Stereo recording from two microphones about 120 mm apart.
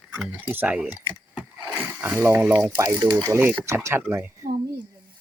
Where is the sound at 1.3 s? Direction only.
5° right (ahead or behind).